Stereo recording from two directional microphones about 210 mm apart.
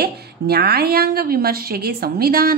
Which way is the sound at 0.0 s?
50° right (ahead or behind).